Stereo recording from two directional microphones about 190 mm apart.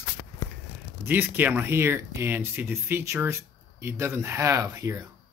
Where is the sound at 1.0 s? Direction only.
10° right (ahead or behind).